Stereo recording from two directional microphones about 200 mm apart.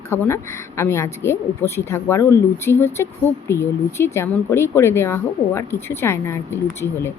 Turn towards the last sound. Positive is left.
turn(degrees=10)  # may be behind; listen again after turning